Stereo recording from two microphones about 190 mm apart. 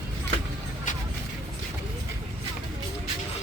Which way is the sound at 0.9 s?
40° left (ahead or behind).